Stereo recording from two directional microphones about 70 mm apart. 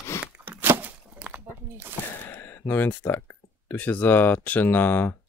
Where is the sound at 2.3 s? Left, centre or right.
Left.